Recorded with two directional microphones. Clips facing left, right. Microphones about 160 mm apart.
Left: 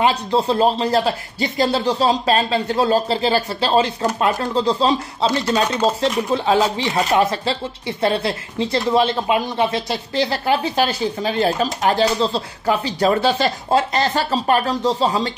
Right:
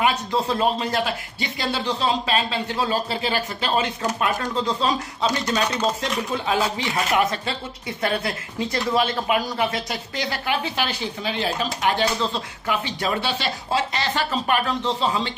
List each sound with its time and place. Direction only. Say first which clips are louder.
0.0 s speech: left 4 dB; 30° left (ahead or behind)